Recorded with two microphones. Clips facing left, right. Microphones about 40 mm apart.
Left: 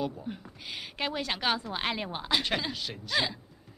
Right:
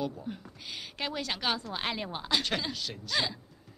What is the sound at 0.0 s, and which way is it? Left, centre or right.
Speech, centre.